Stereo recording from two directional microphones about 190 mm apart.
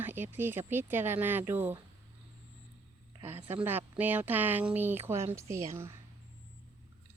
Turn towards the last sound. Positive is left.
turn(degrees=-15)  # may be behind; listen again after turning